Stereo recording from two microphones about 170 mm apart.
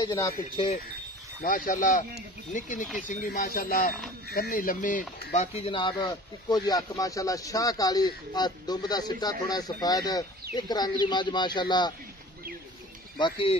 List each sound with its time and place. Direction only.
0.0 s speech: 20° left (ahead or behind)
1.4 s speech: 55° left (ahead or behind); by 11.9 s 25° left (ahead or behind)
13.2 s speech: 30° left (ahead or behind)